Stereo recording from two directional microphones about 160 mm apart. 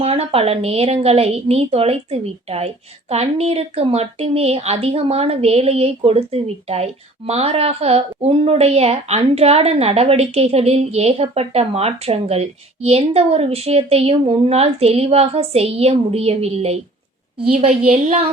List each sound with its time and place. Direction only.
0.0 s speech: 40° right (ahead or behind)